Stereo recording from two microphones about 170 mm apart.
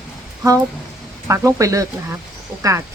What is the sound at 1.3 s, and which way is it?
Speech, 20° right (ahead or behind).